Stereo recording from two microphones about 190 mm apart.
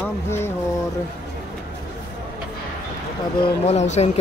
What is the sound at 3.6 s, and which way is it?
Speech, 35° left (ahead or behind).